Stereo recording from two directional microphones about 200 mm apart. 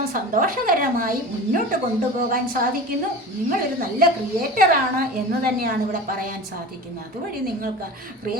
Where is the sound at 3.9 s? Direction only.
45° right (ahead or behind).